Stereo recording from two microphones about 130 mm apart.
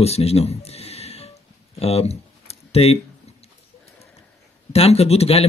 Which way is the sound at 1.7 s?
50° left (ahead or behind).